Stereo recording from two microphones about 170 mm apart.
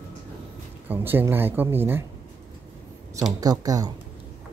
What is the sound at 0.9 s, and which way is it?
Speech, 10° right (ahead or behind).